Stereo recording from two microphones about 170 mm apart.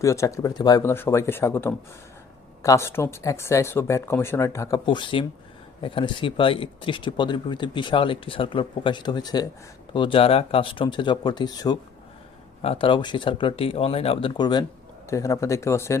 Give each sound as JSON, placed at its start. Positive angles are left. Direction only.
{"t": 0.0, "sound": "speech", "side_deg": 15}
{"t": 12.6, "sound": "speech", "side_deg": 35}